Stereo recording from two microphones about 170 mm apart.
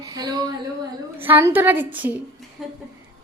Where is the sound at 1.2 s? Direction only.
10° right (ahead or behind).